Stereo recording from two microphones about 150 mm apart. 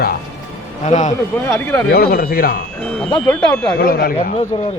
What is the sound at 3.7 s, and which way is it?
Speech, 90° left.